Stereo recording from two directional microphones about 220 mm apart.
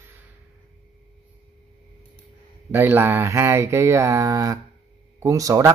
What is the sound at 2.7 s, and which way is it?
A man's voice, 10° right (ahead or behind).